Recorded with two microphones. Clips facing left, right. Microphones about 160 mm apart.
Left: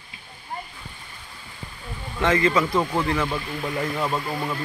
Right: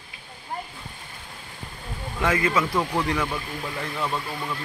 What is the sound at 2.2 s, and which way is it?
Speech, 10° right (ahead or behind).